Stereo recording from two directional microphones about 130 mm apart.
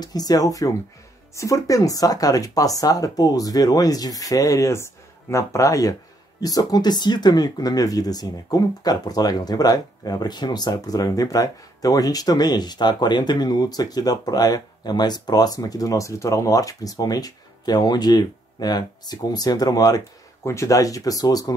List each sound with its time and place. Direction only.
0.0 s speech: 30° left (ahead or behind)